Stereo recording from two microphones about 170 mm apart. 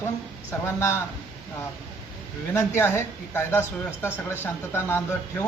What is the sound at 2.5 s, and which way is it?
A man's voice, 15° left (ahead or behind).